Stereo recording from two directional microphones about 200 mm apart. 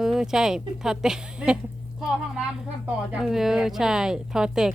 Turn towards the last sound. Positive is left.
turn(degrees=-5)  # may be behind; listen again after turning